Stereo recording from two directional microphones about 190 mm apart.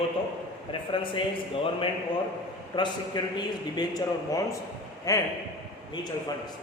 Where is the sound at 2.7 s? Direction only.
25° left (ahead or behind).